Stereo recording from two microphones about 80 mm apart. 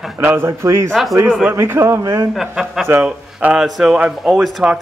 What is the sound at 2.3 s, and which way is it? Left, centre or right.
Speech, centre.